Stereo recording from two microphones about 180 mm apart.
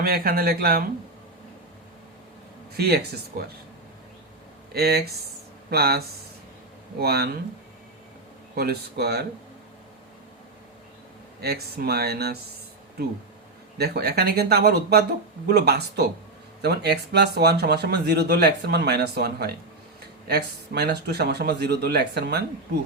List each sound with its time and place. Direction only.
0.0 s speech: 55° right (ahead or behind)
2.7 s speech: 60° right (ahead or behind)
4.7 s speech: 60° right (ahead or behind)
7.0 s speech: 60° right (ahead or behind)
8.5 s speech: 60° right (ahead or behind)
11.3 s speech: 60° right (ahead or behind)
13.7 s speech: 60° right (ahead or behind)